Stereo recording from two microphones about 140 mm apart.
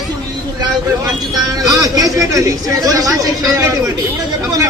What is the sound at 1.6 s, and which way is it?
Speech, 25° right (ahead or behind).